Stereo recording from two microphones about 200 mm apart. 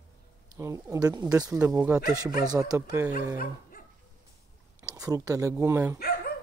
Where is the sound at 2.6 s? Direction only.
15° right (ahead or behind).